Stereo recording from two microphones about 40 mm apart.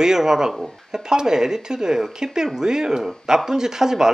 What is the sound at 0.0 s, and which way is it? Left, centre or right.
Speech, centre.